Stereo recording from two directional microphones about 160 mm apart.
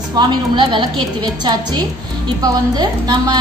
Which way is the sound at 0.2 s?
30° right (ahead or behind).